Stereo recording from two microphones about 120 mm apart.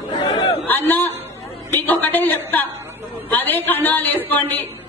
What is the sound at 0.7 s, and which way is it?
A man's voice, 15° left (ahead or behind).